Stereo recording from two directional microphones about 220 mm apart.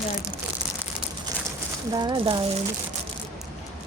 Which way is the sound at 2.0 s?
20° right (ahead or behind).